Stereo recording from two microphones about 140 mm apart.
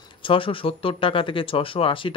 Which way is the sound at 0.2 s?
40° left (ahead or behind).